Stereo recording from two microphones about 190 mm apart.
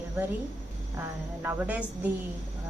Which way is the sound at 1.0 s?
10° right (ahead or behind).